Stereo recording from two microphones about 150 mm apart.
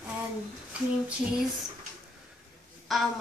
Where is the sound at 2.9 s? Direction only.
Centre (ahead or behind).